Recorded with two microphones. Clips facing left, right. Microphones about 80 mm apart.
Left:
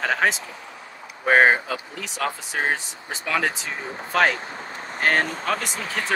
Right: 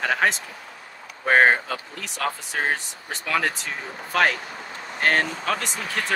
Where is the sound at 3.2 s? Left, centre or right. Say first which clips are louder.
Even; centre.